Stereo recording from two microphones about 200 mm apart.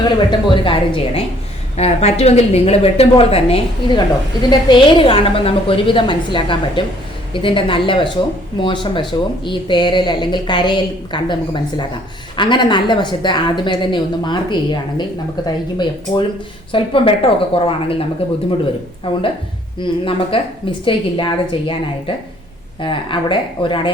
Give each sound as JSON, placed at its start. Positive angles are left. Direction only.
{"t": 0.0, "sound": "speech", "side_deg": 25}
{"t": 19.1, "sound": "speech", "side_deg": 25}